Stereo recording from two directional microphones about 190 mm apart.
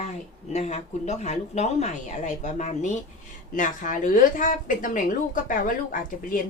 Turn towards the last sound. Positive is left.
turn(degrees=45)  # may be behind; listen again after turning